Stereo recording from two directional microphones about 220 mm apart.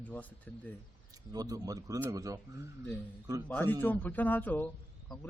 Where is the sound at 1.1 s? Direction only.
15° right (ahead or behind).